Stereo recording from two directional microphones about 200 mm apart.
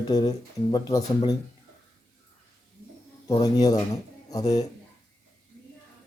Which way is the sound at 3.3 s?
20° left (ahead or behind).